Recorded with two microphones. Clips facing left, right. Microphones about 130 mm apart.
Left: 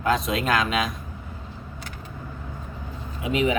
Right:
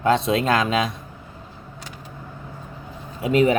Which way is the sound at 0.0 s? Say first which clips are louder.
Right 4 dB; 30° right (ahead or behind).